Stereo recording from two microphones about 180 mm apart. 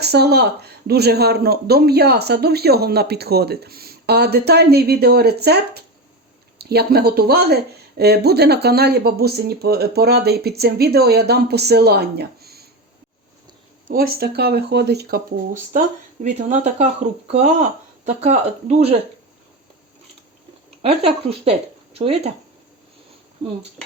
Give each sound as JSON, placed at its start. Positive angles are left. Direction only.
{"t": 0.0, "sound": "speech", "side_deg": -65}
{"t": 13.9, "sound": "speech", "side_deg": -55}
{"t": 15.7, "sound": "speech", "side_deg": -45}
{"t": 20.8, "sound": "speech", "side_deg": -35}